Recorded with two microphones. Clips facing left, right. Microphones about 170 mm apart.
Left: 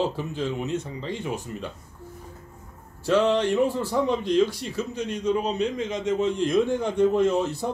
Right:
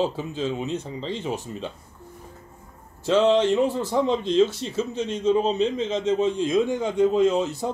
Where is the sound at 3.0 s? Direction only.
20° right (ahead or behind).